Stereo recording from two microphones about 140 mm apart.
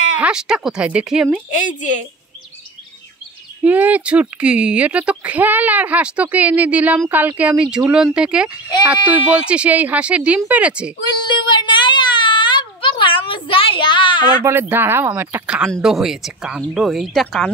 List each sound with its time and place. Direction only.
0.2 s speech: 5° right (ahead or behind)
3.6 s speech: 10° right (ahead or behind)
11.2 s a sound: 35° left (ahead or behind)
14.4 s speech: 15° right (ahead or behind)
15.4 s speech: 5° right (ahead or behind)